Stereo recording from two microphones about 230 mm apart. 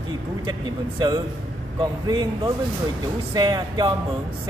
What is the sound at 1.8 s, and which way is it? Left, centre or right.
A man's voice, centre.